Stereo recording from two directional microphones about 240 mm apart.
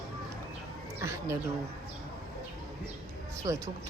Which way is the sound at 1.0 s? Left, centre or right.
Centre.